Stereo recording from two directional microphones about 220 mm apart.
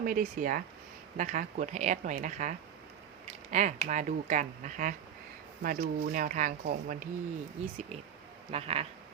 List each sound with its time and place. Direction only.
0.0 s speech: 40° right (ahead or behind)
8.4 s speech: 25° right (ahead or behind)